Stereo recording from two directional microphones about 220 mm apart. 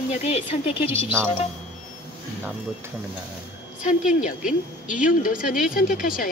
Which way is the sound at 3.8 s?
35° left (ahead or behind).